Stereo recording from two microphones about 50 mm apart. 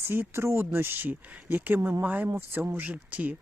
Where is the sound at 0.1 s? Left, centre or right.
Right.